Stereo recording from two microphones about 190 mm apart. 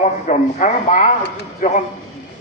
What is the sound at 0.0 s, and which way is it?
A man's voice, 40° left (ahead or behind).